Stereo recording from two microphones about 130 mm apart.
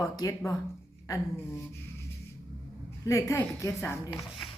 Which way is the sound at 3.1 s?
20° left (ahead or behind).